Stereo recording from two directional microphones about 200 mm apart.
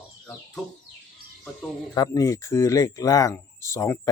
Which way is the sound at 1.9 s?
15° left (ahead or behind).